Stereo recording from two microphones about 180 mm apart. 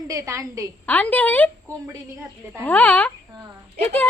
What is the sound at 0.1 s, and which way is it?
Speech, 15° right (ahead or behind).